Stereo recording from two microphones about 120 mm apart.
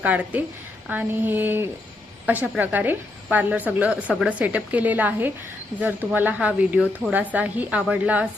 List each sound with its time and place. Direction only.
0.0 s a woman's voice: 15° right (ahead or behind)